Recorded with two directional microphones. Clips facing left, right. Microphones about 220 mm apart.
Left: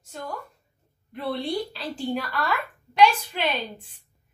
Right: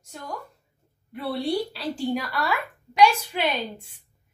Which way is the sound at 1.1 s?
5° right (ahead or behind).